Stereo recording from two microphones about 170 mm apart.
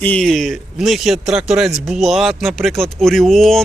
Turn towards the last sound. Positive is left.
turn(degrees=0)  # may be behind; listen again after turning